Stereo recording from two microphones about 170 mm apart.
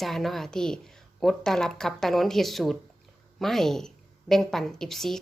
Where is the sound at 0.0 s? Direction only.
Centre (ahead or behind).